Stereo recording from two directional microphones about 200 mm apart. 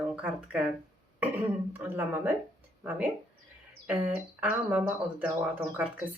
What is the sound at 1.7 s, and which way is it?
Speech, 10° right (ahead or behind).